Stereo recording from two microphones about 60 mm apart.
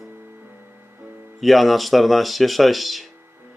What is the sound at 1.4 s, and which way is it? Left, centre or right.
Speech, centre.